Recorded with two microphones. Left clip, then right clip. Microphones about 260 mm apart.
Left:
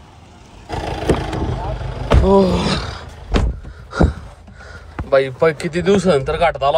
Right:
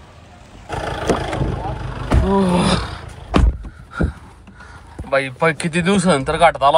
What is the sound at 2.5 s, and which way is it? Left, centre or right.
Roar, centre.